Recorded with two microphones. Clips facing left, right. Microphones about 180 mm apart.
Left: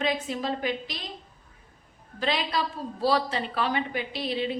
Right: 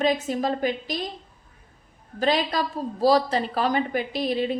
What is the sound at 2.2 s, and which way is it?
A woman's voice, 45° right (ahead or behind).